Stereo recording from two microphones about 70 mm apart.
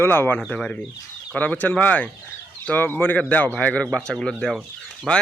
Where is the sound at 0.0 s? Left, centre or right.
Left; by 3.8 s centre.